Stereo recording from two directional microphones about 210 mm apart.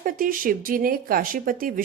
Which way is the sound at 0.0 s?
40° right (ahead or behind).